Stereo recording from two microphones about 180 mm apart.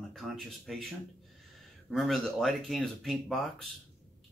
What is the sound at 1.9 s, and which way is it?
Speech, centre (ahead or behind).